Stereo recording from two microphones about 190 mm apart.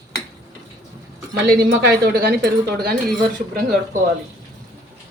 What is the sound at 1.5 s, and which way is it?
Speech, 55° right (ahead or behind).